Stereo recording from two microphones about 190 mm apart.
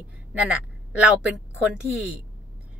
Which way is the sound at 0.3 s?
5° right (ahead or behind).